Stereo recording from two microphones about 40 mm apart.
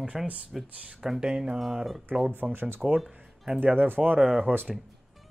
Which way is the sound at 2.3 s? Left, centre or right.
Right.